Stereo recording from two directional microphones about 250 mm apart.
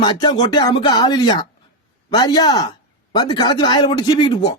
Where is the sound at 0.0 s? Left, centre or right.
Centre.